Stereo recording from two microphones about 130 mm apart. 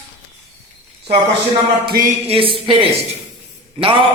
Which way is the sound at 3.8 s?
45° right (ahead or behind).